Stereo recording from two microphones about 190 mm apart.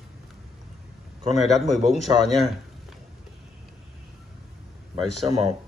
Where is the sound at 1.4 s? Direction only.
Centre (ahead or behind).